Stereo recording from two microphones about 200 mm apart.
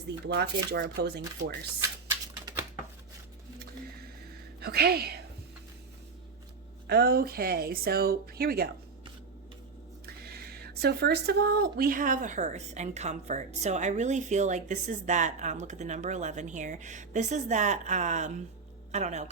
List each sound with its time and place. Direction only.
0.3 s speech: 55° right (ahead or behind)
2.2 s a sound: 20° right (ahead or behind)
4.6 s speech: 50° right (ahead or behind)
6.8 s speech: 55° right (ahead or behind)
10.2 s speech: 50° right (ahead or behind); by 19.3 s 35° right (ahead or behind)